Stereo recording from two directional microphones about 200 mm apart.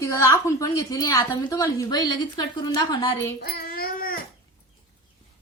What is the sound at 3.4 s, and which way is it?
Babbling, 50° left (ahead or behind).